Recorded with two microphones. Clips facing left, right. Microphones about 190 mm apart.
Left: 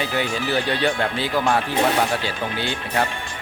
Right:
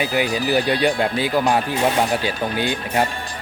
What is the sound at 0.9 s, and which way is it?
Speech, 15° right (ahead or behind).